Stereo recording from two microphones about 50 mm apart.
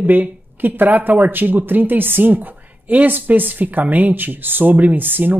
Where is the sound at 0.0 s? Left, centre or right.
Right.